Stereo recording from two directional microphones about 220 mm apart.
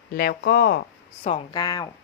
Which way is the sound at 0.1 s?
45° left (ahead or behind).